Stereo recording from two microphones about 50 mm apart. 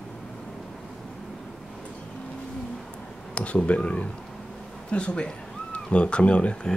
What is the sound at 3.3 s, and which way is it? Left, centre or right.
Speech, left.